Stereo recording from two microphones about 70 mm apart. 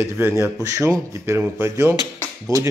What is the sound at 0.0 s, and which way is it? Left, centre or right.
Speech, right.